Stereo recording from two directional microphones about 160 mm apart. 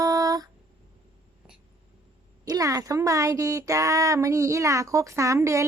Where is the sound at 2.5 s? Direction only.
20° right (ahead or behind).